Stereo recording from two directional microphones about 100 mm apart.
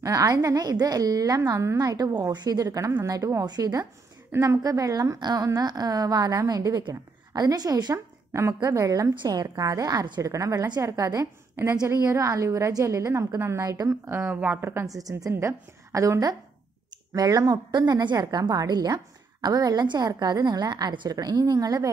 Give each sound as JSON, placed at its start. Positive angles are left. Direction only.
{"t": 0.0, "sound": "a woman's voice", "side_deg": -35}
{"t": 4.3, "sound": "a woman's voice", "side_deg": -30}
{"t": 9.1, "sound": "a woman's voice", "side_deg": -45}
{"t": 10.2, "sound": "a woman's voice", "side_deg": -35}
{"t": 11.6, "sound": "speech", "side_deg": -25}
{"t": 11.9, "sound": "a woman's voice", "side_deg": -35}
{"t": 14.0, "sound": "speech", "side_deg": -25}
{"t": 14.7, "sound": "a woman's voice", "side_deg": -30}